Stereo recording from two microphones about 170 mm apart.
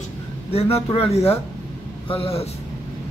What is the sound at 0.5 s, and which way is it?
Speech, 35° left (ahead or behind).